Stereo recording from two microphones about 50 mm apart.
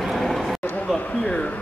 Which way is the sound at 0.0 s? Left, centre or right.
Centre.